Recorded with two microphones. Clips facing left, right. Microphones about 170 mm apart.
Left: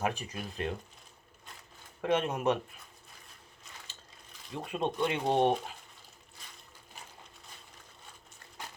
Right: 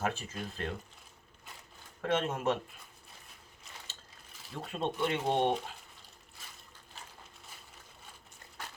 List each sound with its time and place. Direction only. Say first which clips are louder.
0.0 s speech: left 1 dB; 15° left (ahead or behind)
2.0 s speech: left 2 dB; 15° left (ahead or behind)
4.5 s speech: left 2 dB; 15° left (ahead or behind)
6.4 s a sound: even; 5° right (ahead or behind)